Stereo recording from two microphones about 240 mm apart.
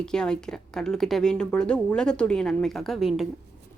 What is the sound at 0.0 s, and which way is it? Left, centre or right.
A woman's voice, centre.